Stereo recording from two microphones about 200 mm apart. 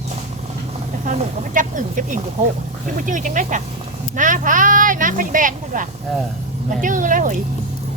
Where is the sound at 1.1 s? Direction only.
40° right (ahead or behind).